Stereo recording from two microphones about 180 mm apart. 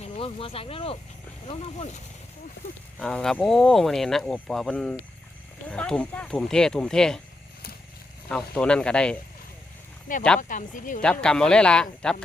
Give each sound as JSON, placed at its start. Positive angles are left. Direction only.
{"t": 0.0, "sound": "speech", "side_deg": 30}
{"t": 3.0, "sound": "speech", "side_deg": 5}
{"t": 8.3, "sound": "speech", "side_deg": 5}
{"t": 10.1, "sound": "speech", "side_deg": 45}
{"t": 11.0, "sound": "speech", "side_deg": 5}